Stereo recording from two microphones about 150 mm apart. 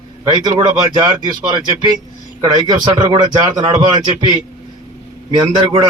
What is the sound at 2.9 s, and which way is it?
Speech, 30° right (ahead or behind).